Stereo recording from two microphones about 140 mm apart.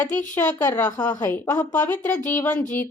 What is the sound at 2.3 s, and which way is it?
Speech, 10° left (ahead or behind).